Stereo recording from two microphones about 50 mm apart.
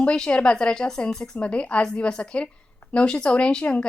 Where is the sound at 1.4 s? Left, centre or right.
Left.